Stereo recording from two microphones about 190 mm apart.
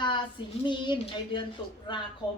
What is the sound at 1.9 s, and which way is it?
Speech, 25° left (ahead or behind).